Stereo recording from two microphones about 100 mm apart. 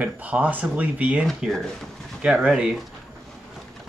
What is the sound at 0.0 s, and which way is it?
Speech, 15° right (ahead or behind).